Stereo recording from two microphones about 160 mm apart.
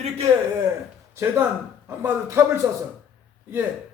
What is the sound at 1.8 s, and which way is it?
Speech, 15° right (ahead or behind).